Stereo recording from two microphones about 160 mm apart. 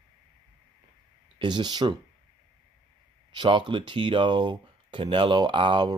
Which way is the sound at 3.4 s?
30° right (ahead or behind).